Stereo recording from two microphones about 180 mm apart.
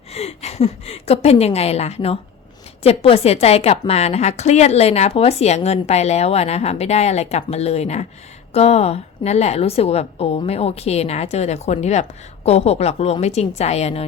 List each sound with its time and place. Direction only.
0.1 s a woman's voice: 35° left (ahead or behind)